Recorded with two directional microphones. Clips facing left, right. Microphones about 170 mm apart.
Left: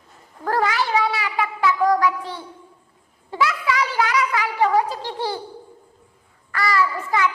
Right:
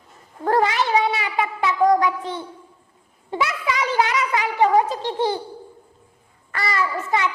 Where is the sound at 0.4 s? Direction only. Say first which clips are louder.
Right 2 dB; 20° right (ahead or behind).